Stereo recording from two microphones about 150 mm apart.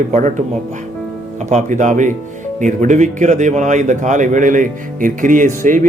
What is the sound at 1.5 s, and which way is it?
Speech, 55° right (ahead or behind).